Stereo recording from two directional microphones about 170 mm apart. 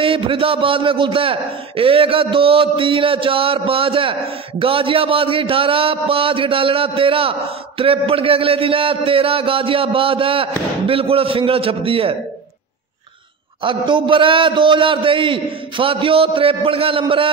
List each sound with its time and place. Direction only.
0.0 s a man's voice: 30° right (ahead or behind)
13.6 s a man's voice: 30° right (ahead or behind)